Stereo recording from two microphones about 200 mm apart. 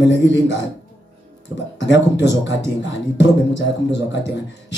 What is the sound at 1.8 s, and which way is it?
A man's voice, 65° left (ahead or behind).